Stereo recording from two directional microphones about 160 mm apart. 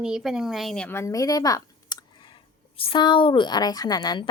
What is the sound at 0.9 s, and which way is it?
Speech, 15° left (ahead or behind).